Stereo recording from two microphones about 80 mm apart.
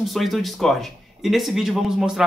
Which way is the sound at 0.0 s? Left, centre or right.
Centre.